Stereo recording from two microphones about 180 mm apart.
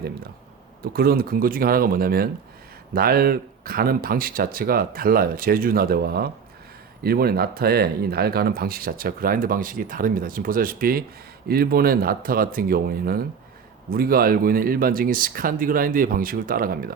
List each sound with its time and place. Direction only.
0.9 s a man's voice: 55° right (ahead or behind)